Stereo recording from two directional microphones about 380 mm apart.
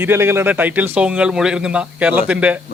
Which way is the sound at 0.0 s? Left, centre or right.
Centre.